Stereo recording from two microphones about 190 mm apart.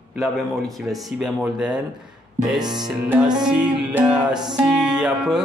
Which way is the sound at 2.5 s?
20° right (ahead or behind).